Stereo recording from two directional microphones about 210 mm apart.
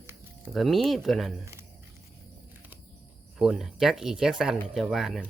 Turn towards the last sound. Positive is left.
turn(degrees=0)  # may be behind; listen again after turning